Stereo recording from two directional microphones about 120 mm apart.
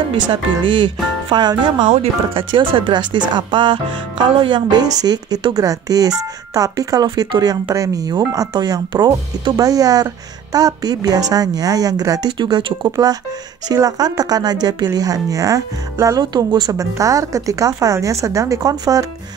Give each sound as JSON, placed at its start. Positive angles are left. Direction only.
{"t": 0.1, "sound": "speech", "side_deg": -45}